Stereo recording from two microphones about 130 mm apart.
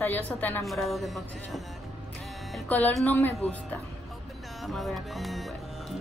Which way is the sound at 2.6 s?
10° left (ahead or behind).